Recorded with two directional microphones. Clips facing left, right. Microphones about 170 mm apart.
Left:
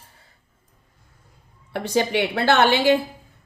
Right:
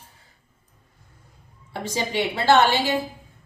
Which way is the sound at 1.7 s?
60° left (ahead or behind).